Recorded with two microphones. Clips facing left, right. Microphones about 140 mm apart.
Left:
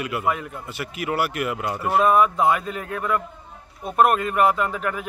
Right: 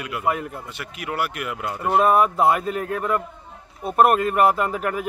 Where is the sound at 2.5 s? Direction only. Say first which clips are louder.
Right 2 dB; 45° right (ahead or behind).